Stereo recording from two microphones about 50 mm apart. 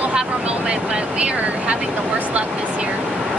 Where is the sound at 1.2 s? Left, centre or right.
Right.